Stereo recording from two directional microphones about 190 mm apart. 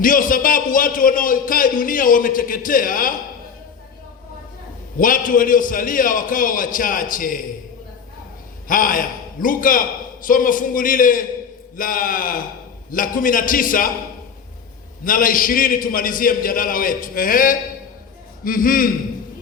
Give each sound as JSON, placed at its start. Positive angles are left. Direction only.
{"t": 0.0, "sound": "speech", "side_deg": 45}
{"t": 4.9, "sound": "a man's voice", "side_deg": 45}
{"t": 8.6, "sound": "a man's voice", "side_deg": 45}
{"t": 15.0, "sound": "a man's voice", "side_deg": 45}